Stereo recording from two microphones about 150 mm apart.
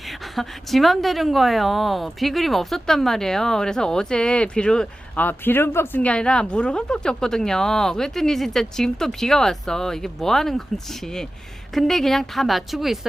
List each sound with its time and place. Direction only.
0.3 s a woman's voice: centre (ahead or behind)
11.7 s a woman's voice: centre (ahead or behind)